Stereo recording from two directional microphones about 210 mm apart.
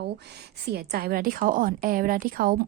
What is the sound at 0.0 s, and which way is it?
Speech, 50° right (ahead or behind).